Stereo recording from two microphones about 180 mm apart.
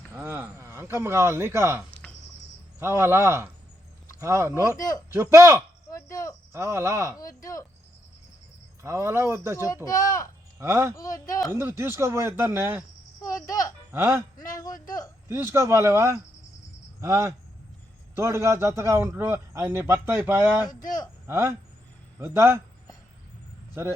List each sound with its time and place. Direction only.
0.1 s a sound: 10° right (ahead or behind)
2.7 s a man's voice: 15° right (ahead or behind)
5.9 s cricket: 15° left (ahead or behind)
6.5 s a man's voice: 15° right (ahead or behind)
7.2 s speech: 20° left (ahead or behind)
8.8 s a man's voice: 15° right (ahead or behind)
9.8 s speech: 15° left (ahead or behind)
10.6 s a man's voice: 15° right (ahead or behind)
10.9 s speech: 20° left (ahead or behind)
11.5 s a man's voice: 15° right (ahead or behind)
13.2 s speech: 20° left (ahead or behind)
13.9 s a man's voice: 10° right (ahead or behind)
14.5 s speech: 20° left (ahead or behind)
15.3 s a man's voice: 15° right (ahead or behind)